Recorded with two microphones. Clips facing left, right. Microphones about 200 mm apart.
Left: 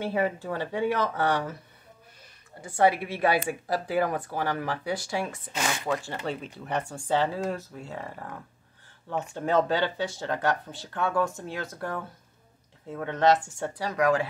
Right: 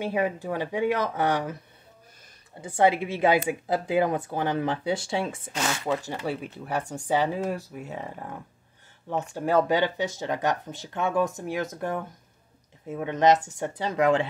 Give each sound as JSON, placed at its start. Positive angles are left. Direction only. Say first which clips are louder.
{"t": 0.0, "sound": "speech", "louder": "right 1 dB", "side_deg": -15}
{"t": 2.6, "sound": "speech", "louder": "right 1 dB", "side_deg": -20}
{"t": 6.0, "sound": "speech", "louder": "right 2 dB", "side_deg": -10}